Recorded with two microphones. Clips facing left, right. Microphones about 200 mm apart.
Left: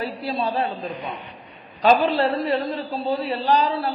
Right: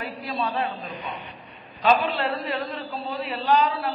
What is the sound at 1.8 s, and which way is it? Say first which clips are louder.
A man's voice: left 4 dB; 35° left (ahead or behind).